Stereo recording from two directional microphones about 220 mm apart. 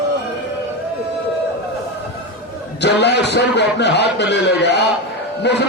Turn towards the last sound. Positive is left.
turn(degrees=50)  # may be behind; listen again after turning